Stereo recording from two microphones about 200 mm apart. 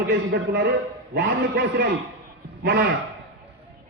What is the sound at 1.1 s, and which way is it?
A man's voice, 60° right (ahead or behind).